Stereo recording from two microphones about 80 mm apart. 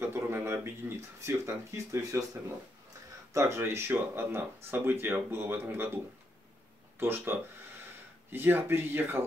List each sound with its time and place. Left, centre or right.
0.0 s speech: right
3.3 s speech: right
7.0 s speech: right